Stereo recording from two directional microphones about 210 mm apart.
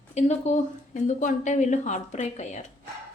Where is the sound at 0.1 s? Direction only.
30° left (ahead or behind).